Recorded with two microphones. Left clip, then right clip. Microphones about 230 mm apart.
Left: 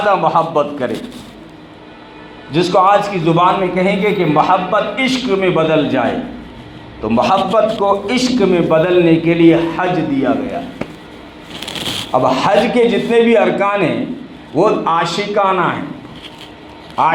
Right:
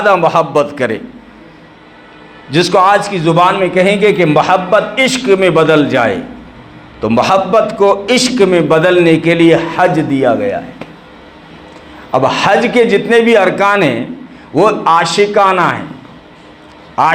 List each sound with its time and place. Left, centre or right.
0.1 s a man's voice: right
2.5 s a man's voice: right
12.1 s a man's voice: right
16.9 s a man's voice: right